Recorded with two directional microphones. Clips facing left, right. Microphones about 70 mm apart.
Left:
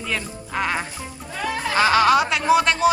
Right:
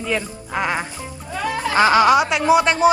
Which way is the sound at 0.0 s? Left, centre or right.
Centre.